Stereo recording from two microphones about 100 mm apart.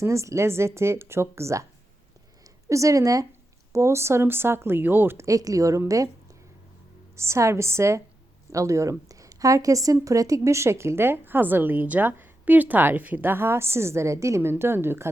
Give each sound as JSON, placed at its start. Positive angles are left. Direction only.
{"t": 0.0, "sound": "a woman's voice", "side_deg": -30}
{"t": 2.6, "sound": "a woman's voice", "side_deg": -30}
{"t": 7.2, "sound": "a woman's voice", "side_deg": -30}